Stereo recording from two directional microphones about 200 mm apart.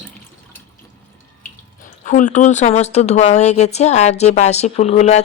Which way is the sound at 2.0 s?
40° left (ahead or behind).